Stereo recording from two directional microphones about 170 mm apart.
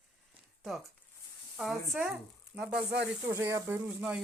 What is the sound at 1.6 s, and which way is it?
Speech, centre (ahead or behind).